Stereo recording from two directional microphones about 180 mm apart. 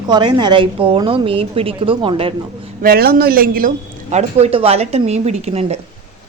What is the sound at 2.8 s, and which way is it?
A man's voice, 55° right (ahead or behind).